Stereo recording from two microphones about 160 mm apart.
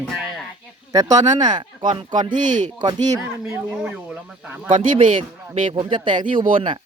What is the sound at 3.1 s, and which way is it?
Speech, 10° right (ahead or behind).